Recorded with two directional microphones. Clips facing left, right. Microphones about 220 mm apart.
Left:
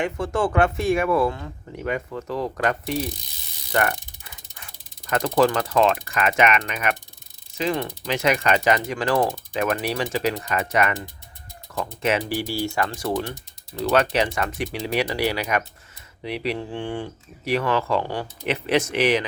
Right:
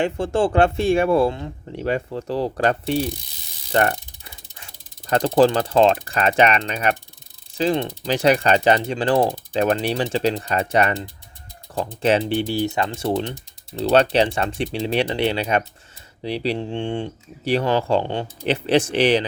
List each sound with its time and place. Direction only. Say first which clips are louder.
0.0 s speech: right 3 dB; 30° right (ahead or behind)